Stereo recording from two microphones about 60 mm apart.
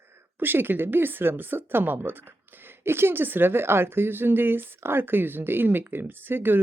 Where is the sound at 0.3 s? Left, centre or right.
Right.